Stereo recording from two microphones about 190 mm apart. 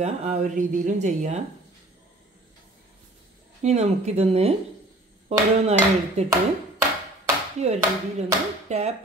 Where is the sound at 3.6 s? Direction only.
35° right (ahead or behind).